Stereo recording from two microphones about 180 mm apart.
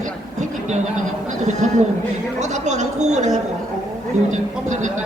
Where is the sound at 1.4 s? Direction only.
40° right (ahead or behind).